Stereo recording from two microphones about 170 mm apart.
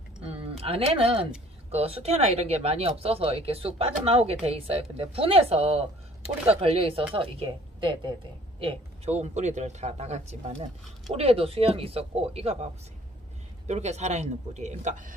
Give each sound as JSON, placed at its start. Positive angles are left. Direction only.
{"t": 0.2, "sound": "a woman's voice", "side_deg": -35}
{"t": 13.7, "sound": "a man's voice", "side_deg": -40}